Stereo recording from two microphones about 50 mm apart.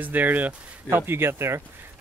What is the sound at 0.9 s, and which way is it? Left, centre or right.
Speech, right.